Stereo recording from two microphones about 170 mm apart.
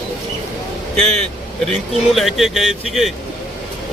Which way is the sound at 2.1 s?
Centre (ahead or behind).